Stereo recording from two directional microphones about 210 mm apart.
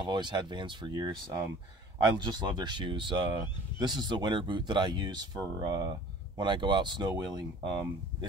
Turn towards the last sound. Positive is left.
turn(degrees=-20)  # may be behind; listen again after turning